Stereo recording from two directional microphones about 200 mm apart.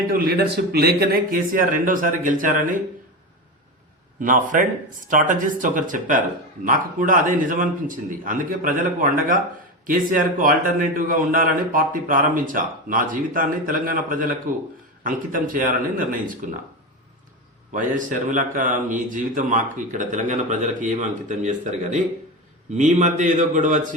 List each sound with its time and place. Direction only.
0.1 s a man's voice: 50° right (ahead or behind)
4.2 s a man's voice: 40° right (ahead or behind)
17.7 s speech: 40° right (ahead or behind)